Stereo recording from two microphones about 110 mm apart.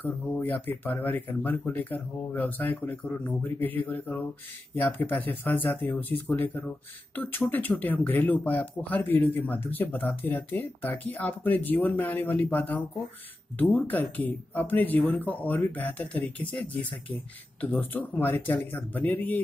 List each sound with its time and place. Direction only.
0.0 s speech: 15° left (ahead or behind)